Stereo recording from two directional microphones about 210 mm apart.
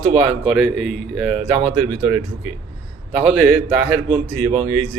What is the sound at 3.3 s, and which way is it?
Speech, 5° right (ahead or behind).